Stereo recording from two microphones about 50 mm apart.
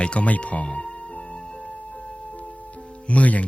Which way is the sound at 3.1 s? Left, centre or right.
Left.